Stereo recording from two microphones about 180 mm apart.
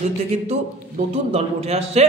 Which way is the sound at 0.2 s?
35° right (ahead or behind).